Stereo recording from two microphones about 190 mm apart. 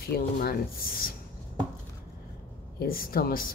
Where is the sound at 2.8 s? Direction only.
50° left (ahead or behind).